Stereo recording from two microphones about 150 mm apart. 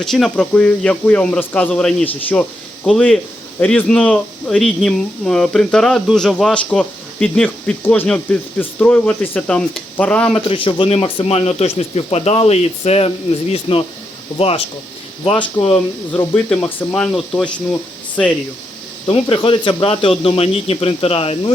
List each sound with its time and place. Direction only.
0.0 s a man's voice: 5° left (ahead or behind)
10.3 s speech: 35° left (ahead or behind)
16.3 s a man's voice: 15° left (ahead or behind)
19.0 s speech: 35° left (ahead or behind)